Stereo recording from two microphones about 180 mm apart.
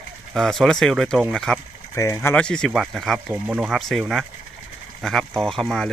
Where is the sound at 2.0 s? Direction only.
15° left (ahead or behind).